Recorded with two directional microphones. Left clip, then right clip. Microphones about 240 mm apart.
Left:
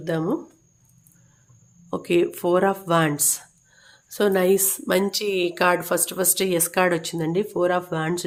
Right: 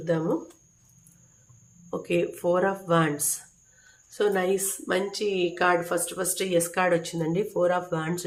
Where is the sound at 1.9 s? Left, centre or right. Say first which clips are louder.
Left 5 dB; left.